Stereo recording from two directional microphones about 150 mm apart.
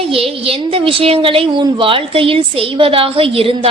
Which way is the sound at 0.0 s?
40° right (ahead or behind).